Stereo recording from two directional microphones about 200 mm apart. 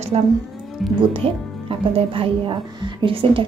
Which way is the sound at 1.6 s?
25° right (ahead or behind).